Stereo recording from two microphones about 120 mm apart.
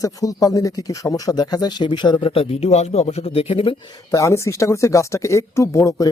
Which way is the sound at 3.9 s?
25° left (ahead or behind).